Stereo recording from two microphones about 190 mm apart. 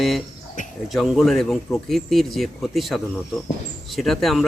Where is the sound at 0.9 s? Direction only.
Centre (ahead or behind).